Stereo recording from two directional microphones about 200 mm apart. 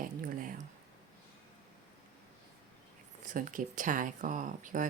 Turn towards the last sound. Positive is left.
turn(degrees=-40)  # may be behind; listen again after turning